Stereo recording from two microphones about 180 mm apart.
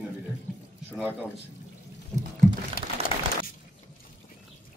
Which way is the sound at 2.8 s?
55° left (ahead or behind).